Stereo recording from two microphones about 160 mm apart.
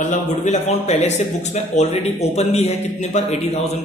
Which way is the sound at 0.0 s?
50° left (ahead or behind).